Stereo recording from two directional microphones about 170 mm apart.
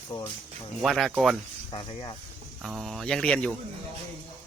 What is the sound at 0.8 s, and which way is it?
Speech, centre (ahead or behind).